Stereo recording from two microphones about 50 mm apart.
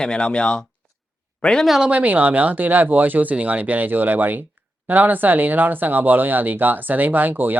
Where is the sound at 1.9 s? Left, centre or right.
Right.